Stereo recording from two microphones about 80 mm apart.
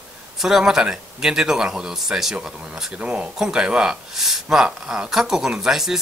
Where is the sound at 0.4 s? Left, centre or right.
Centre.